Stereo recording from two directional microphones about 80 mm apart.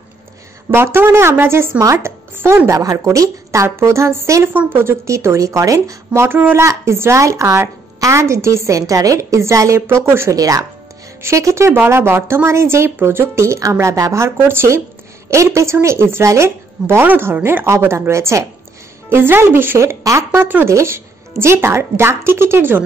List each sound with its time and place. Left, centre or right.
0.7 s a woman's voice: right
2.8 s a woman's voice: right
6.2 s speech: right
6.6 s a woman's voice: right
10.3 s speech: right
11.2 s a woman's voice: right
20.3 s speech: right
20.6 s a woman's voice: right